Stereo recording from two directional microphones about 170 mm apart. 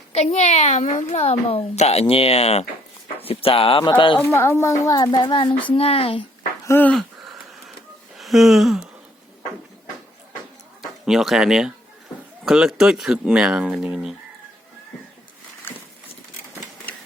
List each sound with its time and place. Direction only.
0.1 s a child's voice: 40° left (ahead or behind)
4.2 s a woman's voice: 15° left (ahead or behind); by 6.2 s 35° left (ahead or behind)
6.7 s speech: 10° left (ahead or behind)
8.2 s a sound: centre (ahead or behind)
11.0 s speech: centre (ahead or behind)